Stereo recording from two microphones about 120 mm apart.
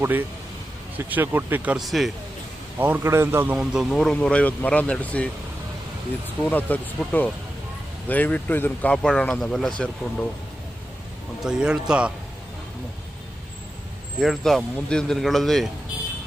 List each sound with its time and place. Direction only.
0.0 s a man's voice: 15° right (ahead or behind)
1.7 s a man's voice: centre (ahead or behind)
2.7 s a man's voice: 15° right (ahead or behind)
3.6 s a man's voice: 5° right (ahead or behind)
3.9 s speech: 5° left (ahead or behind)
6.4 s speech: 15° left (ahead or behind)
11.4 s a man's voice: 5° right (ahead or behind)
14.2 s a man's voice: centre (ahead or behind)